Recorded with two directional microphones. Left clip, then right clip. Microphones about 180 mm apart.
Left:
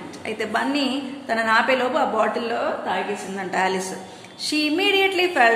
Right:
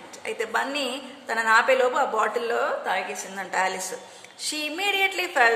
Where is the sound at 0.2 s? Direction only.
25° right (ahead or behind).